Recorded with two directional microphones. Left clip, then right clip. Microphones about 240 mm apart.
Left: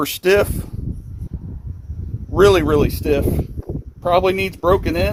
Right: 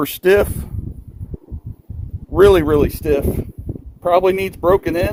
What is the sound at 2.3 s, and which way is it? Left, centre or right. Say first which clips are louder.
Speech: right 2 dB; right.